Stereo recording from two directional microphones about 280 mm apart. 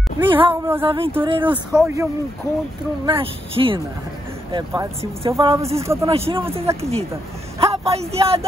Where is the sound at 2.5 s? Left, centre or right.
Centre.